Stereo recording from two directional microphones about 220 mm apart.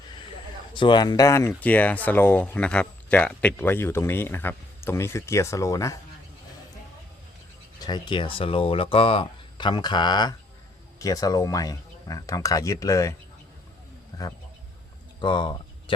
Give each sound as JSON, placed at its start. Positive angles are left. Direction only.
{"t": 0.7, "sound": "speech", "side_deg": 20}
{"t": 7.9, "sound": "speech", "side_deg": 20}
{"t": 15.2, "sound": "speech", "side_deg": 20}